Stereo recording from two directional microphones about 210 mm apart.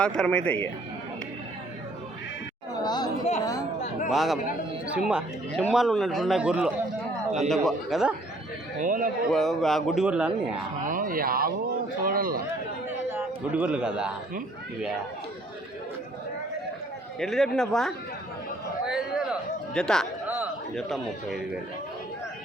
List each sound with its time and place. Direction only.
0.0 s a man's voice: 5° left (ahead or behind)
2.8 s speech: 20° left (ahead or behind)
4.1 s a man's voice: centre (ahead or behind)
8.8 s a man's voice: 40° right (ahead or behind)
9.3 s a man's voice: centre (ahead or behind)
10.8 s speech: 40° right (ahead or behind)
13.1 s a man's voice: 10° right (ahead or behind)
17.2 s a man's voice: centre (ahead or behind)
18.9 s a sound: 5° right (ahead or behind)
20.2 s a man's voice: 5° right (ahead or behind)